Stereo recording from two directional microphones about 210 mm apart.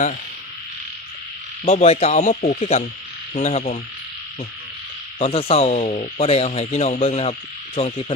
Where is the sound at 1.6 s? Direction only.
30° left (ahead or behind).